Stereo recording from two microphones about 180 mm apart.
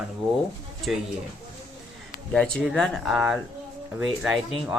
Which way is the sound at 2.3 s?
5° left (ahead or behind).